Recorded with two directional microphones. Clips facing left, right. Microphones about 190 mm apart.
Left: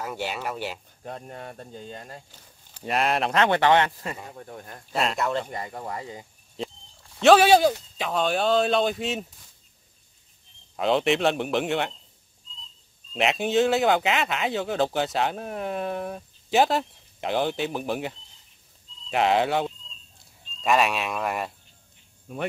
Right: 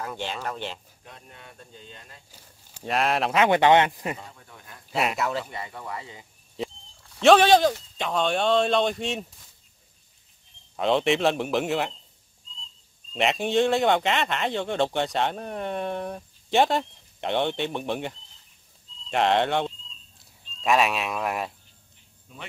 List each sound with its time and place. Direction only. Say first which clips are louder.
0.0 s speech: left 1 dB; 10° left (ahead or behind)
1.0 s speech: left 14 dB; 45° left (ahead or behind)
2.8 s speech: even; centre (ahead or behind); by 4.2 s 15° right (ahead or behind)
4.3 s speech: left 8 dB; 45° left (ahead or behind)
4.9 s speech: left 1 dB; 5° right (ahead or behind)
5.4 s speech: left 3 dB; 45° left (ahead or behind)
7.2 s speech: even; centre (ahead or behind)
10.8 s speech: even; centre (ahead or behind)
13.1 s speech: even; centre (ahead or behind)
22.3 s cricket: left 11 dB; 55° left (ahead or behind)